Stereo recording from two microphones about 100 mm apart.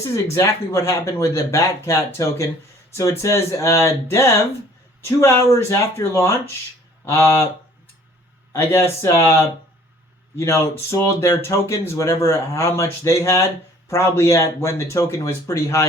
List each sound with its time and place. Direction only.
0.3 s speech: 30° left (ahead or behind)
8.5 s speech: 25° left (ahead or behind)